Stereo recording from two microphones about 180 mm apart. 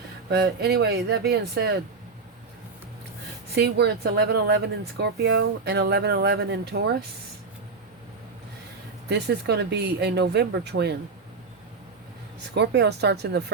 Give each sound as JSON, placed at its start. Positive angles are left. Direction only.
{"t": 0.3, "sound": "speech", "side_deg": -65}
{"t": 3.5, "sound": "speech", "side_deg": -65}
{"t": 9.0, "sound": "speech", "side_deg": -70}
{"t": 12.5, "sound": "speech", "side_deg": -70}